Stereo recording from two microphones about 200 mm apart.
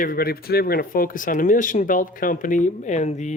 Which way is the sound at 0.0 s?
45° left (ahead or behind).